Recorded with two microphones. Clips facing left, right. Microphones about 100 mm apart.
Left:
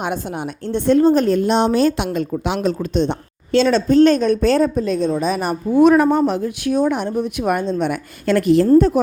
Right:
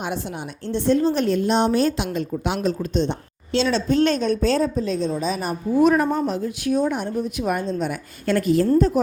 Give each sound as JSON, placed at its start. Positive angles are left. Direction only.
{"t": 0.7, "sound": "a woman's voice", "side_deg": 55}
{"t": 1.5, "sound": "a woman's voice", "side_deg": 90}
{"t": 2.6, "sound": "a woman's voice", "side_deg": 60}
{"t": 4.4, "sound": "speech", "side_deg": 60}